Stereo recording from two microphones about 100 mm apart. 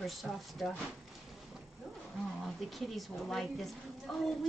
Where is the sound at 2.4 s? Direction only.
Centre (ahead or behind).